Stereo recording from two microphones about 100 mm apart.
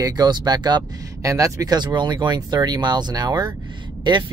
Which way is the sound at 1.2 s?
30° right (ahead or behind).